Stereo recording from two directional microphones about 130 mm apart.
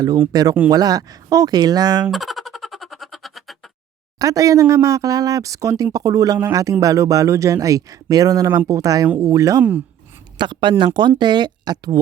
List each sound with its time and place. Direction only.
0.3 s speech: 30° right (ahead or behind)
2.0 s music: centre (ahead or behind)
4.2 s speech: 25° right (ahead or behind)
9.6 s speech: 15° right (ahead or behind)
10.3 s speech: 35° right (ahead or behind)